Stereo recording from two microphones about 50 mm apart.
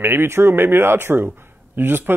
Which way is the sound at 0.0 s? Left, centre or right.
Right.